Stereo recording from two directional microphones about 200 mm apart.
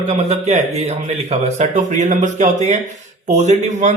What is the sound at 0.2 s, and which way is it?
A man's voice, 35° right (ahead or behind).